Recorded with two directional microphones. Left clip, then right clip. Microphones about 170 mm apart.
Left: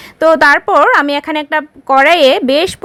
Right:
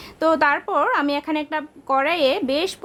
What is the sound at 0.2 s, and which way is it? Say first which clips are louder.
Speech: left 10 dB; 30° left (ahead or behind).